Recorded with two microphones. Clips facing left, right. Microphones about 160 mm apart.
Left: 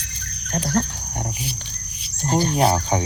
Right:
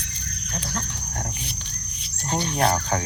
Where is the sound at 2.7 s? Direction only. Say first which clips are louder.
Left 3 dB; 15° left (ahead or behind).